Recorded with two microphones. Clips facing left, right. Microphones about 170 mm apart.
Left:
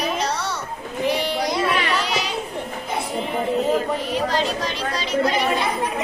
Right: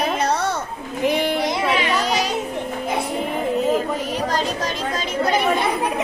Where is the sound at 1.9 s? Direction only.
45° right (ahead or behind).